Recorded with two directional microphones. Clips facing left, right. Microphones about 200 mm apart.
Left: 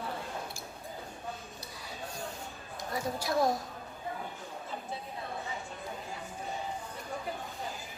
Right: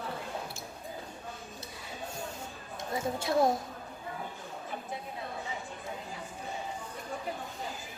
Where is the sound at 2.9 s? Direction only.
25° right (ahead or behind).